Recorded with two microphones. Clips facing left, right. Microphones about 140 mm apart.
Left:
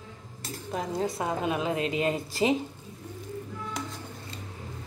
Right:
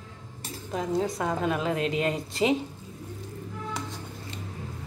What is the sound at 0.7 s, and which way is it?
Speech, centre (ahead or behind).